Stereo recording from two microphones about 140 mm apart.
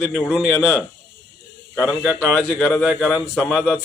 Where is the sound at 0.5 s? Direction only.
15° left (ahead or behind).